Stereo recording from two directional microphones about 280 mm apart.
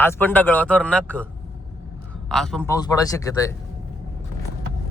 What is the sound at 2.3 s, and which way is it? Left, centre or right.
Speech, centre.